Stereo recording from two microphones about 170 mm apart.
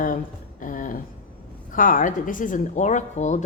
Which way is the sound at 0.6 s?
50° left (ahead or behind).